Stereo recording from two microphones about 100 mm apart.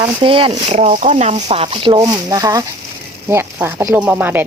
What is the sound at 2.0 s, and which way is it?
Speech, 40° right (ahead or behind).